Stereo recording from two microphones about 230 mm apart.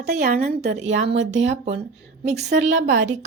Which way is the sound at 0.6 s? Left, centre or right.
Right.